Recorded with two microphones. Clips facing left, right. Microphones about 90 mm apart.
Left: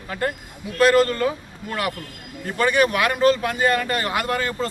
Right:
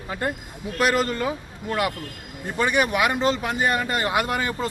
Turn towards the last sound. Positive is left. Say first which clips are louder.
# even
turn(degrees=-15)  # may be behind; listen again after turning